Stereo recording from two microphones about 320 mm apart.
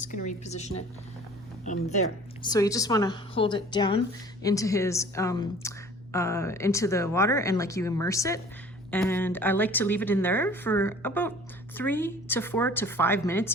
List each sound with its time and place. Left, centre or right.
0.0 s a woman's voice: left
2.4 s a woman's voice: centre